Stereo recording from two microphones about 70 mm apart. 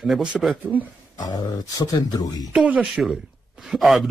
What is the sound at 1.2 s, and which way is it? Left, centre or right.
Speech, left.